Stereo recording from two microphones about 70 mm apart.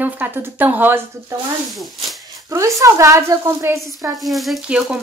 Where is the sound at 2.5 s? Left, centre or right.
Right.